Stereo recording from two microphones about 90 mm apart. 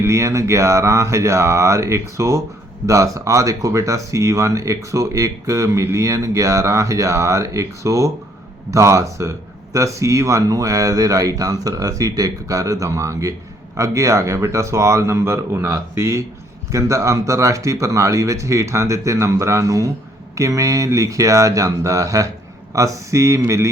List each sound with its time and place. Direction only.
0.0 s speech: 35° right (ahead or behind)